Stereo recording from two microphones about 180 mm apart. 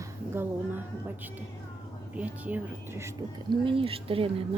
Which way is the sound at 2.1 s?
10° right (ahead or behind).